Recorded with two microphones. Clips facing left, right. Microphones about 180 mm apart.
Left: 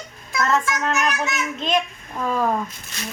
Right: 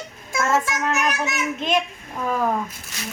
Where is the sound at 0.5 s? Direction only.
15° right (ahead or behind).